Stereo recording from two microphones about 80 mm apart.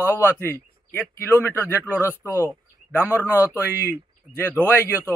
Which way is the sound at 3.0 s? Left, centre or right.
Right.